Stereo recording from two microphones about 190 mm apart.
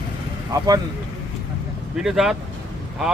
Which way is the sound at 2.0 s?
Centre (ahead or behind).